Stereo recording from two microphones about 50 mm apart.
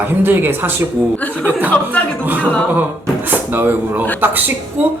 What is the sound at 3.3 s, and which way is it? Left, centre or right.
Speech, right.